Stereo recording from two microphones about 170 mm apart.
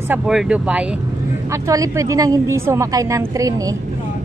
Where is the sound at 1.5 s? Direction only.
20° right (ahead or behind).